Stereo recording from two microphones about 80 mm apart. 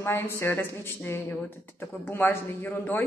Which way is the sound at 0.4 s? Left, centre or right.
Left.